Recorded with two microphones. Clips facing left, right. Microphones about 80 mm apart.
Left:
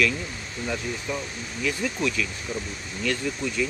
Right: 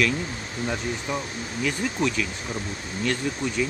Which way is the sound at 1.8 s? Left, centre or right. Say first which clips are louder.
Right 2 dB; right.